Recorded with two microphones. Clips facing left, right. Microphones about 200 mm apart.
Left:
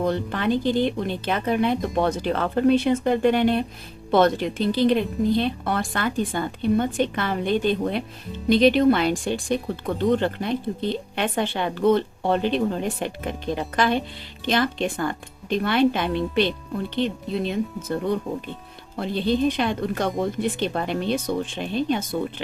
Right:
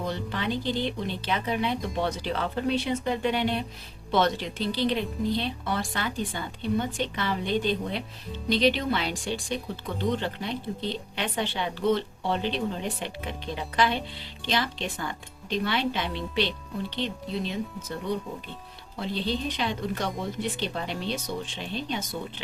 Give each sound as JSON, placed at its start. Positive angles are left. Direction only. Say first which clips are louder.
{"t": 0.0, "sound": "speech", "louder": "left 7 dB", "side_deg": 50}